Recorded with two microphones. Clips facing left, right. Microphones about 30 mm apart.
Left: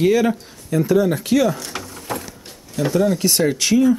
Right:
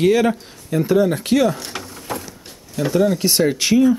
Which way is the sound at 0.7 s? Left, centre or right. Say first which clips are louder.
Even; right.